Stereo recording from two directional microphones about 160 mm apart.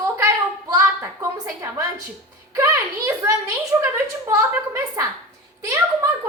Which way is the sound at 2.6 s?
20° right (ahead or behind).